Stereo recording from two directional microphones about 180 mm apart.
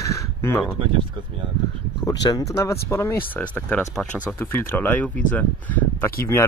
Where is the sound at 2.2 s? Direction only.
20° left (ahead or behind).